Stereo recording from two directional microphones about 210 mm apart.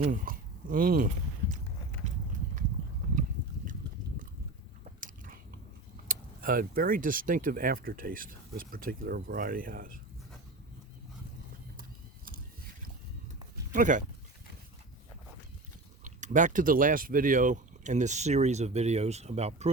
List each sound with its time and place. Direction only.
0.0 s a sound: 40° right (ahead or behind)
4.9 s biting: 40° right (ahead or behind)
6.1 s speech: 40° right (ahead or behind)
13.7 s speech: 40° right (ahead or behind)
16.0 s speech: 35° right (ahead or behind)